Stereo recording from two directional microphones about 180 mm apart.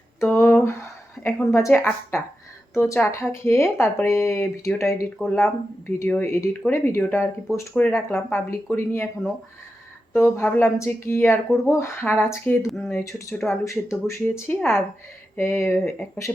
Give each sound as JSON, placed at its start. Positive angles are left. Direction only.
{"t": 0.2, "sound": "a sound", "side_deg": 15}
{"t": 1.2, "sound": "speech", "side_deg": 10}
{"t": 10.2, "sound": "speech", "side_deg": 15}
{"t": 12.6, "sound": "speech", "side_deg": 0}
{"t": 12.9, "sound": "speech", "side_deg": 15}